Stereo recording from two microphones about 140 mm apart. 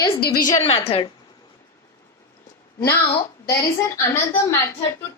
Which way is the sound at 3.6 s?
20° left (ahead or behind).